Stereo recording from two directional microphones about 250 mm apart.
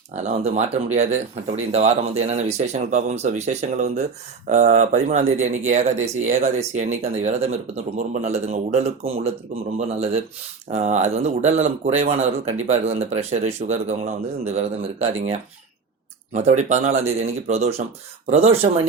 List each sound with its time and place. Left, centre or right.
0.2 s speech: right